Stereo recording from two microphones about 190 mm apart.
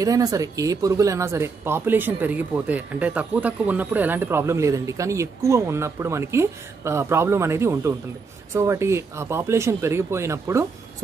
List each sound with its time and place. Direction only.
0.0 s speech: 20° right (ahead or behind)